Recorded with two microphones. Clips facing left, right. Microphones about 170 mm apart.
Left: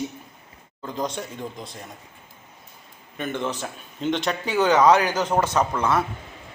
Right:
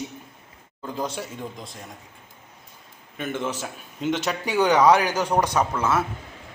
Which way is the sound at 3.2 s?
5° right (ahead or behind).